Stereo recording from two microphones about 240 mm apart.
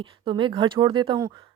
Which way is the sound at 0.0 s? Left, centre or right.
Right.